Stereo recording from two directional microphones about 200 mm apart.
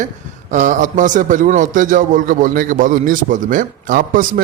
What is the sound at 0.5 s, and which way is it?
A man's voice, 40° right (ahead or behind).